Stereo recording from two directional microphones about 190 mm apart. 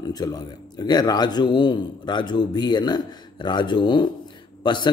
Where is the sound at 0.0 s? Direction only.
20° left (ahead or behind).